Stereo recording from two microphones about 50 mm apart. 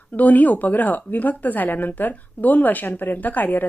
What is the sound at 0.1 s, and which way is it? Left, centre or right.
Speech, left.